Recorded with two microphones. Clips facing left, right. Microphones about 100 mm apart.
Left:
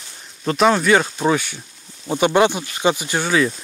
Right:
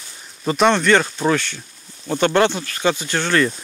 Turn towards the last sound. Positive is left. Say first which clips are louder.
# even
turn(degrees=5)  # may be behind; listen again after turning